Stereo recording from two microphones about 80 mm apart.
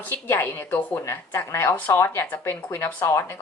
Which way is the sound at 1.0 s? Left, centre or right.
Left.